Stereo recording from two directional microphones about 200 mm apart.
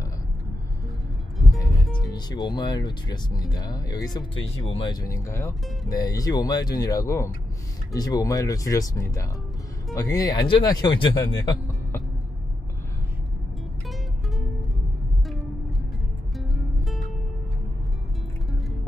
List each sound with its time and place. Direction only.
2.0 s music: 20° left (ahead or behind)
2.5 s speech: 20° left (ahead or behind)
16.3 s music: centre (ahead or behind)